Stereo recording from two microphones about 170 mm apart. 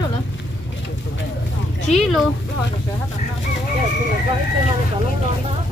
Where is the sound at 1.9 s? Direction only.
Centre (ahead or behind).